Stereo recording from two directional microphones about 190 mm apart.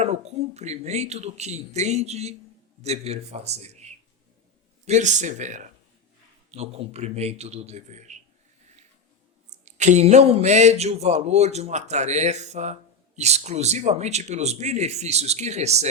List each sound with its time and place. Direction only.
0.0 s speech: 35° right (ahead or behind)
9.5 s speech: 40° right (ahead or behind)